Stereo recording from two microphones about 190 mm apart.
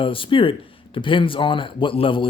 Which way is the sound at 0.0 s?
25° left (ahead or behind).